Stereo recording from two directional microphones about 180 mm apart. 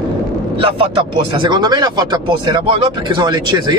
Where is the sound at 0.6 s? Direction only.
30° right (ahead or behind).